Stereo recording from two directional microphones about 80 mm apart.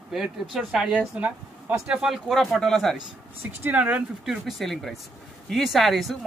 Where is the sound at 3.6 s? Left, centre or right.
Centre.